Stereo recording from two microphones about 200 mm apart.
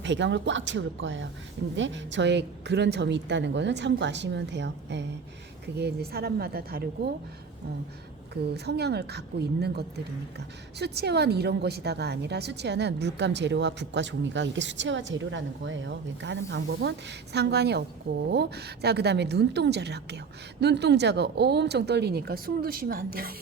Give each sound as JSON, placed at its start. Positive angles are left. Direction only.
{"t": 0.0, "sound": "a woman's voice", "side_deg": -65}
{"t": 8.3, "sound": "a woman's voice", "side_deg": -55}